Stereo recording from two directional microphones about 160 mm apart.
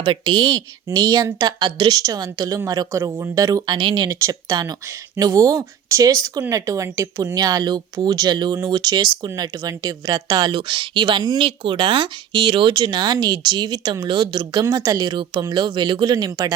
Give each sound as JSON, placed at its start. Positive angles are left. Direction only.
{"t": 0.0, "sound": "speech", "side_deg": -30}